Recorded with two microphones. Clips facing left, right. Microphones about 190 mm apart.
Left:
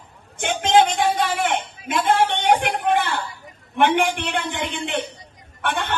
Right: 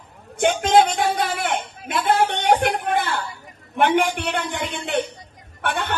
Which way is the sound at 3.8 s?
40° right (ahead or behind).